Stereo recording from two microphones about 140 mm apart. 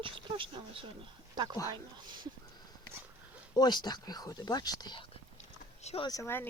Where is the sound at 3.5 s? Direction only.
30° left (ahead or behind).